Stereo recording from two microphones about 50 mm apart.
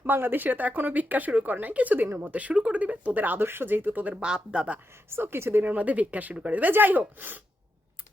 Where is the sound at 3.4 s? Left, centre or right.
Right.